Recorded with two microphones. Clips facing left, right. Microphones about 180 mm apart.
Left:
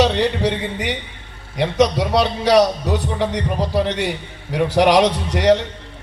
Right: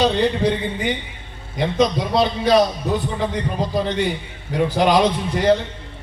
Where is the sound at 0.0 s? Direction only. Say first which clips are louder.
Left 1 dB; 75° left (ahead or behind).